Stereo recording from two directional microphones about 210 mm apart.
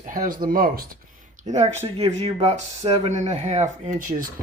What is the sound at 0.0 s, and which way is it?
Speech, 40° right (ahead or behind).